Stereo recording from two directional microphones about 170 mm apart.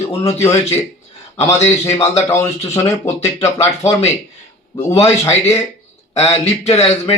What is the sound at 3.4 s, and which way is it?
Speech, 40° left (ahead or behind).